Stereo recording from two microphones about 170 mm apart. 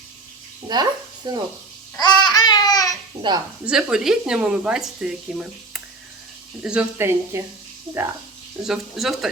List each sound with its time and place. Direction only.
0.7 s speech: 25° right (ahead or behind)
2.0 s babbling: 25° left (ahead or behind)
3.2 s speech: 25° right (ahead or behind)
3.7 s speech: 5° right (ahead or behind)
8.6 s speech: centre (ahead or behind)